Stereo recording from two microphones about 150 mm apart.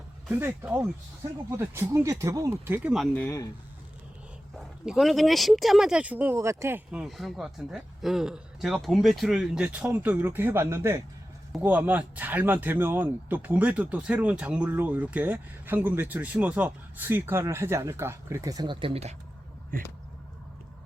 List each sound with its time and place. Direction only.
0.3 s speech: 10° right (ahead or behind)
3.2 s speech: 20° left (ahead or behind)
4.5 s speech: centre (ahead or behind); by 19.1 s 40° right (ahead or behind)